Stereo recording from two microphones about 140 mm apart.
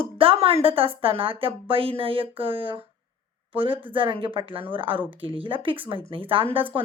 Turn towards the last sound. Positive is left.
turn(degrees=-40)  # may be behind; listen again after turning